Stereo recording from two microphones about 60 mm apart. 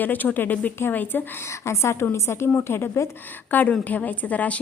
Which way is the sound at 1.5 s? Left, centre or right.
Left.